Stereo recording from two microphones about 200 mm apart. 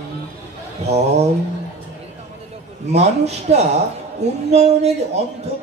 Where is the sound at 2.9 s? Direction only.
35° right (ahead or behind).